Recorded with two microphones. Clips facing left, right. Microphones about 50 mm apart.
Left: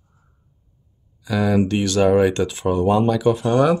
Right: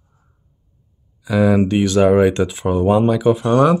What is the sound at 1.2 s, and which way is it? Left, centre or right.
Speech, centre.